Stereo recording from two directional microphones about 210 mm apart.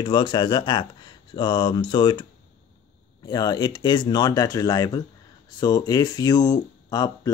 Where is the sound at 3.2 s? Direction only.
20° left (ahead or behind).